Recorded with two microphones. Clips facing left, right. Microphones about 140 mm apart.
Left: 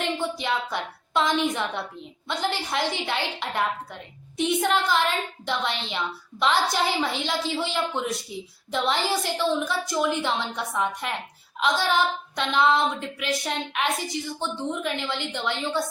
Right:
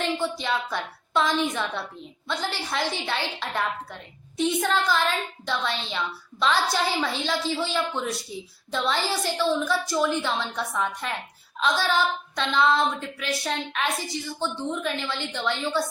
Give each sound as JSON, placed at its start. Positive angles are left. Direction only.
{"t": 0.0, "sound": "a woman's voice", "side_deg": 15}